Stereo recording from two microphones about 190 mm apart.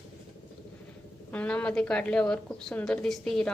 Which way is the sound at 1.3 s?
5° left (ahead or behind).